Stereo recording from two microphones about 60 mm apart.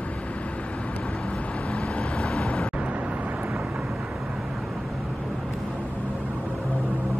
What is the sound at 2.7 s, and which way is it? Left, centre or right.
Vehicle, right.